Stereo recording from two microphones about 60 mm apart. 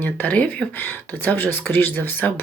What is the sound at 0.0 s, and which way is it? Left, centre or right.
Speech, left.